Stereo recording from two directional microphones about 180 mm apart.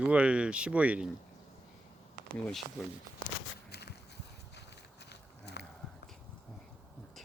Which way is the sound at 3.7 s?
65° left (ahead or behind).